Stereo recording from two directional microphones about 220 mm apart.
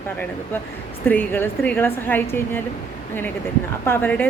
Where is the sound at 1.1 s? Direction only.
10° left (ahead or behind).